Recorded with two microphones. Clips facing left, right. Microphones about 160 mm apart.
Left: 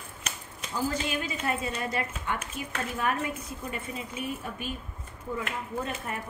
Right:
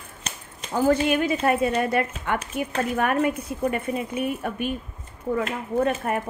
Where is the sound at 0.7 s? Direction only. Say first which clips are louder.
Right 10 dB; 60° right (ahead or behind).